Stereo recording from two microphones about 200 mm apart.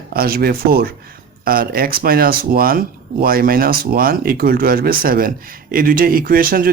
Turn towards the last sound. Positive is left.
turn(degrees=-45)  # may be behind; listen again after turning